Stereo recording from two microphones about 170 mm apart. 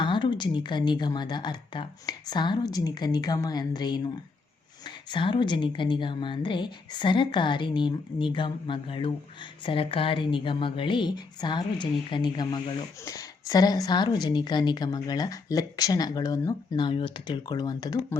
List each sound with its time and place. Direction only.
0.0 s a woman's voice: 30° left (ahead or behind)
5.1 s a woman's voice: 30° left (ahead or behind)